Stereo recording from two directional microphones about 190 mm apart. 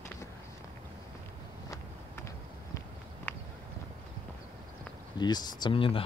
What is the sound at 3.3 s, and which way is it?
Horse, 10° left (ahead or behind).